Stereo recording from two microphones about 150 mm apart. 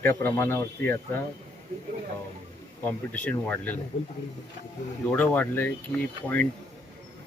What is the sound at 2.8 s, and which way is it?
Speech, 10° left (ahead or behind).